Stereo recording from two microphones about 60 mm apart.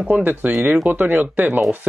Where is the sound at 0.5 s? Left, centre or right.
Centre.